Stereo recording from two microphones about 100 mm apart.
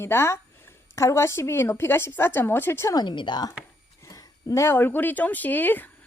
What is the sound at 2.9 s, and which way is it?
Speech, 45° left (ahead or behind).